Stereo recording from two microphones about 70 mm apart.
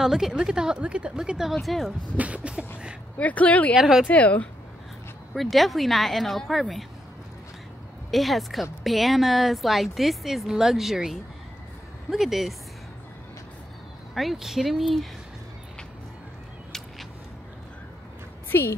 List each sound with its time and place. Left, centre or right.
0.0 s a woman's voice: centre
1.5 s a woman's voice: centre
2.1 s speech: centre
3.2 s speech: left
3.7 s a woman's voice: centre
4.1 s speech: centre
5.3 s a woman's voice: centre
8.1 s a woman's voice: centre
14.1 s a woman's voice: centre
18.5 s a woman's voice: left